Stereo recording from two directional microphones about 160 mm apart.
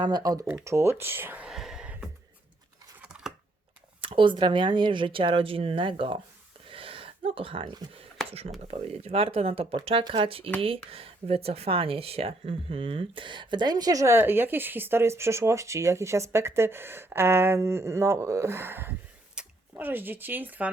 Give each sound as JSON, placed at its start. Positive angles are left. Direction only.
{"t": 0.0, "sound": "speech", "side_deg": -25}
{"t": 3.0, "sound": "a sound", "side_deg": -5}
{"t": 4.0, "sound": "speech", "side_deg": -35}
{"t": 6.7, "sound": "gasp", "side_deg": -35}
{"t": 7.3, "sound": "speech", "side_deg": -35}